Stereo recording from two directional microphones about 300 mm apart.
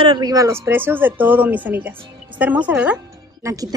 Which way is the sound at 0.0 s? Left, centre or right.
Centre.